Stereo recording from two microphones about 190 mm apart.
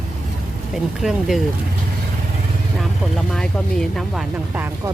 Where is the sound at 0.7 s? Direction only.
Centre (ahead or behind).